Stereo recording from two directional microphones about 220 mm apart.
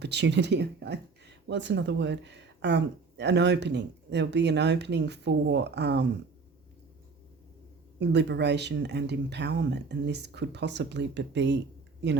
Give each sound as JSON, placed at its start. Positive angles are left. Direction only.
{"t": 0.0, "sound": "speech", "side_deg": -50}
{"t": 7.9, "sound": "speech", "side_deg": -50}